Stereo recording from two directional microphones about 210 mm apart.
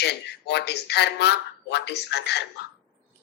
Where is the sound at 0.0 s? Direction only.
50° left (ahead or behind).